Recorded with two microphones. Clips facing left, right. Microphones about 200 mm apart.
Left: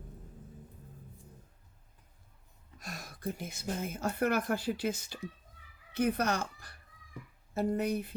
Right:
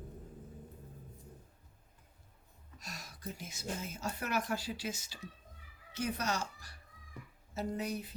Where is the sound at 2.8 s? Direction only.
55° left (ahead or behind).